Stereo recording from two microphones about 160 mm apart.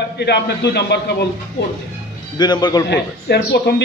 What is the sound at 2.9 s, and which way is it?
Speech, 90° left.